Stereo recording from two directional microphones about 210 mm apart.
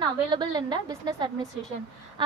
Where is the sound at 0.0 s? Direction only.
20° right (ahead or behind).